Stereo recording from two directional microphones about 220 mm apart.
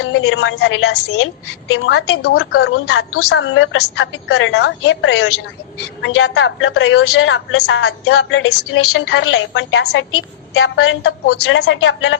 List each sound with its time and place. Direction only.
0.0 s a woman's voice: 60° left (ahead or behind)
10.5 s a woman's voice: 70° left (ahead or behind)
11.3 s a woman's voice: 50° left (ahead or behind)